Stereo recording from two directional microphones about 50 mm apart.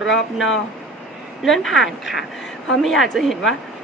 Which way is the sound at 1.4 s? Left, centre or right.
Centre.